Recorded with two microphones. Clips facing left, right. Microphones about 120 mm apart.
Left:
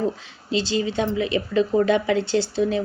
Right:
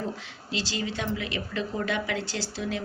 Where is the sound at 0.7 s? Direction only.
25° left (ahead or behind).